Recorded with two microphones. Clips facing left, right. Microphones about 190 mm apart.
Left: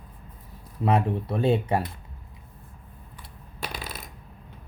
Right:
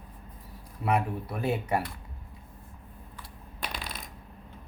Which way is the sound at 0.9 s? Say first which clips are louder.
Left 4 dB; 25° left (ahead or behind).